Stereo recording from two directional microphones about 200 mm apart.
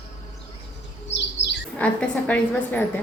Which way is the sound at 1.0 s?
60° left (ahead or behind).